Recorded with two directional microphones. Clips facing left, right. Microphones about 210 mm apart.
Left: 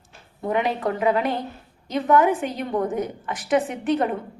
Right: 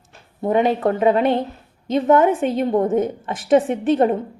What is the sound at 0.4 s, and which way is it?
A woman's voice, 25° right (ahead or behind).